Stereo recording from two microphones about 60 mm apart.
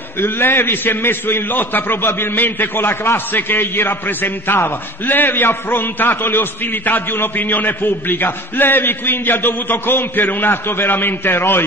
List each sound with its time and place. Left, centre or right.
0.2 s a man's voice: left